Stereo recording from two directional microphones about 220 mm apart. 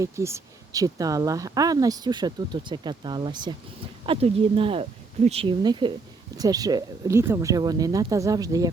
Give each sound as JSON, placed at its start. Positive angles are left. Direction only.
{"t": 0.0, "sound": "speech", "side_deg": -15}